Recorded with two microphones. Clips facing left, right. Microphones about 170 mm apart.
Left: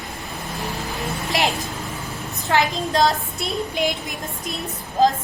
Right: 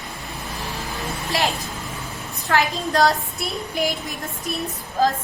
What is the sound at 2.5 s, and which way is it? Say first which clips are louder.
A woman's voice: left 1 dB; 20° left (ahead or behind).